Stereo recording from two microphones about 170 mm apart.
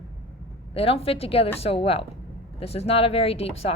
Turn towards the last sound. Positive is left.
turn(degrees=35)  # may be behind; listen again after turning